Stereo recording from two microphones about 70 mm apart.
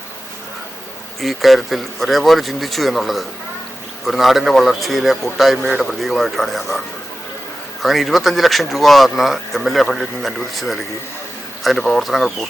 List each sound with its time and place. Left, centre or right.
1.2 s speech: centre